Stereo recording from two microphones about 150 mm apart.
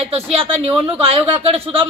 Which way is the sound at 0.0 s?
40° right (ahead or behind).